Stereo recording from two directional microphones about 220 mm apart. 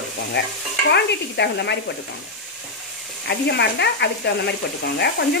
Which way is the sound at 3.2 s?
50° left (ahead or behind).